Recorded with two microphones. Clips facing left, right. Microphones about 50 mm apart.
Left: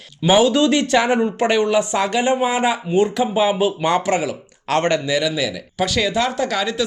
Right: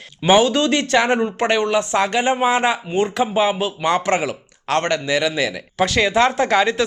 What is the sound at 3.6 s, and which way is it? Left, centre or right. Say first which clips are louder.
Speech: left 1 dB; centre.